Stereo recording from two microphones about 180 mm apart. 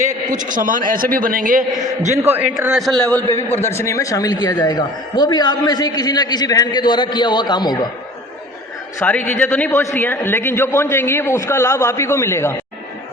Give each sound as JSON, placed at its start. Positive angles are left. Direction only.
{"t": 0.0, "sound": "a man's voice", "side_deg": -45}
{"t": 2.2, "sound": "a man's voice", "side_deg": -10}
{"t": 3.5, "sound": "a man's voice", "side_deg": 15}
{"t": 9.0, "sound": "a man's voice", "side_deg": 10}